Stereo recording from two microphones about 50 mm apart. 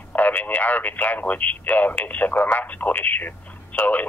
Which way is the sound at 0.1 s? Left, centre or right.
Left.